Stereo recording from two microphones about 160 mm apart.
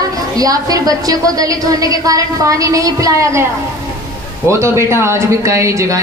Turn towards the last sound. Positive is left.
turn(degrees=-20)  # may be behind; listen again after turning